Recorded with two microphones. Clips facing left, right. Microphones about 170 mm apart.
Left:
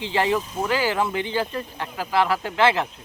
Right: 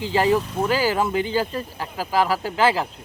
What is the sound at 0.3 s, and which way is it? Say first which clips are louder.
Speech: right 3 dB; 65° right (ahead or behind).